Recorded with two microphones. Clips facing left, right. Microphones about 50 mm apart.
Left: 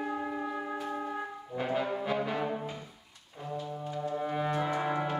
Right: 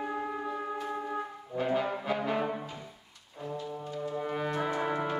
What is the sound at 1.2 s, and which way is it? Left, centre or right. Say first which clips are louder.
Brass instrument: right 1 dB; centre.